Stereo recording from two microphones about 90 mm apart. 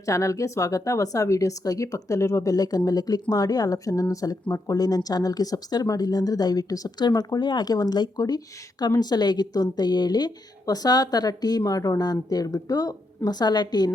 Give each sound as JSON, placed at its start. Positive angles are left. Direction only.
{"t": 0.0, "sound": "speech", "side_deg": 35}